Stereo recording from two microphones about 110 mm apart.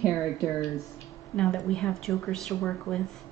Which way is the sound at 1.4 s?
5° left (ahead or behind).